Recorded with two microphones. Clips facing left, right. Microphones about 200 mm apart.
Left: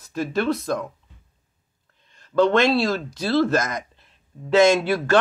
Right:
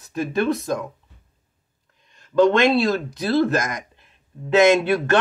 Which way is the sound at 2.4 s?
15° right (ahead or behind).